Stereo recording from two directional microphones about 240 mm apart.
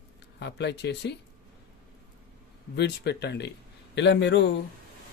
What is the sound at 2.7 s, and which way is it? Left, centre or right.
Speech, left.